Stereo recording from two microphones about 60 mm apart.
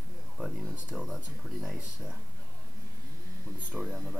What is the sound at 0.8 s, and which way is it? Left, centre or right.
Speech, centre.